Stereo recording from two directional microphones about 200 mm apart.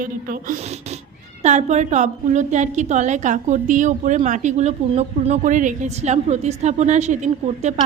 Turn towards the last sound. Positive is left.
turn(degrees=-35)  # may be behind; listen again after turning